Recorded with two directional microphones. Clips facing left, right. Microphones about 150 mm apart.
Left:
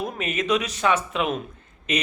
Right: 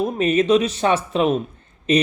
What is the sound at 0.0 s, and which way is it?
Speech, 30° right (ahead or behind).